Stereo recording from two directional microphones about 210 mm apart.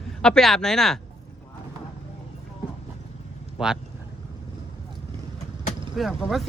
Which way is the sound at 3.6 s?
5° right (ahead or behind).